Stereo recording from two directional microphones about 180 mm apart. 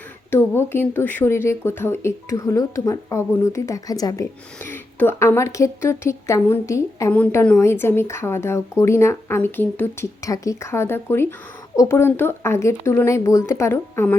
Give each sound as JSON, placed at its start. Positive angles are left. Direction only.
{"t": 0.3, "sound": "a woman's voice", "side_deg": 10}